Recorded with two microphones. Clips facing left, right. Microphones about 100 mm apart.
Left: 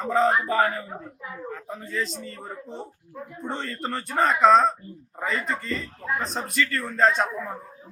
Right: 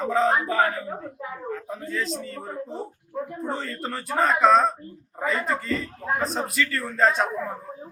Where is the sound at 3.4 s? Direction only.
5° right (ahead or behind).